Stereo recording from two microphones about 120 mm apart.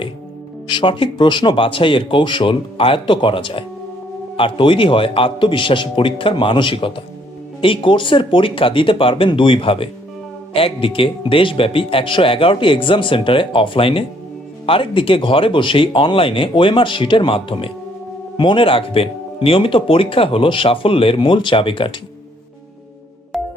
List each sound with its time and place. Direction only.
0.7 s speech: 45° left (ahead or behind)
23.3 s music: 5° right (ahead or behind)